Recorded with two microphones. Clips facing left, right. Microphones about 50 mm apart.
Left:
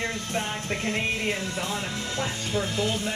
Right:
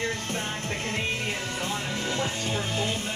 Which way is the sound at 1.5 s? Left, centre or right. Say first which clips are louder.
Even; right.